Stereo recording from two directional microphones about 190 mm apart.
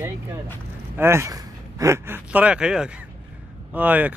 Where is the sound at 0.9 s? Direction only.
15° right (ahead or behind).